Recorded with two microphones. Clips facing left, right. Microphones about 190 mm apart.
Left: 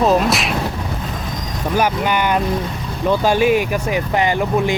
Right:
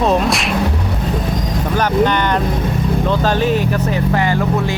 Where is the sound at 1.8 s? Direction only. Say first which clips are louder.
Right 3 dB; 10° left (ahead or behind).